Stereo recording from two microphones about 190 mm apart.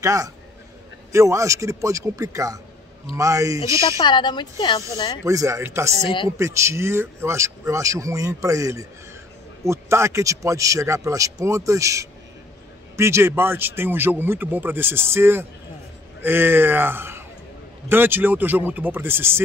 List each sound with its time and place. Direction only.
0.0 s speech: 15° right (ahead or behind)
4.0 s speech: 25° left (ahead or behind)
5.2 s speech: 15° right (ahead or behind)
6.0 s speech: 25° left (ahead or behind)
6.3 s speech: 15° right (ahead or behind)